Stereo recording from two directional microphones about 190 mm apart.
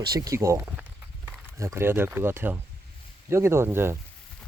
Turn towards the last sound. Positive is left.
turn(degrees=-15)  # may be behind; listen again after turning